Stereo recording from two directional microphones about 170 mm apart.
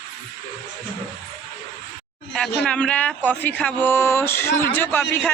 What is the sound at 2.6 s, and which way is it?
Speech, 5° left (ahead or behind).